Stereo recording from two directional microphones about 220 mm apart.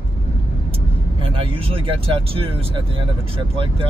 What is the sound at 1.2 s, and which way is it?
Speech, 25° right (ahead or behind).